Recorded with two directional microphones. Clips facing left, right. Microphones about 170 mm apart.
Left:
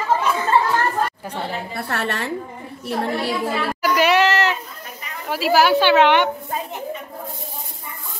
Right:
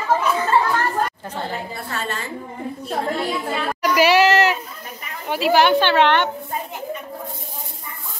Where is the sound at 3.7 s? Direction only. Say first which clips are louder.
Right 2 dB; centre (ahead or behind).